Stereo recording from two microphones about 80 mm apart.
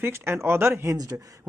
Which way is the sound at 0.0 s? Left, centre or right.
Right.